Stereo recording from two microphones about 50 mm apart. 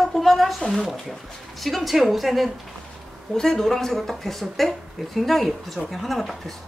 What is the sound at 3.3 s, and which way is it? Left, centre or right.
A woman's voice, centre.